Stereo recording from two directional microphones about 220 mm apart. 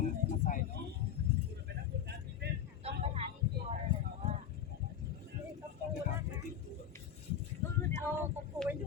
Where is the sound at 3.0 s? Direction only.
30° right (ahead or behind).